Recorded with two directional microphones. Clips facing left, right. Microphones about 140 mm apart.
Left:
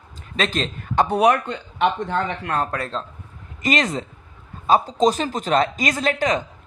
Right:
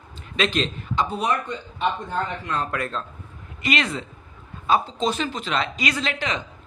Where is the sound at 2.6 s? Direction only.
30° left (ahead or behind).